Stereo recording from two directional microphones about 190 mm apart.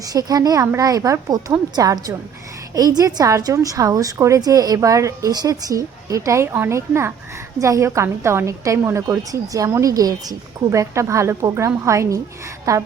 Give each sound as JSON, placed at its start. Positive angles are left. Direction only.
{"t": 0.1, "sound": "a woman's voice", "side_deg": -20}